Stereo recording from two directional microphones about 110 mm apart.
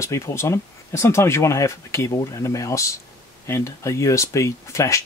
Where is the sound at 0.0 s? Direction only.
25° left (ahead or behind).